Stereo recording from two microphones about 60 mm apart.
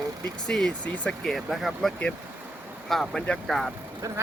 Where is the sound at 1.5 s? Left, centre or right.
Centre.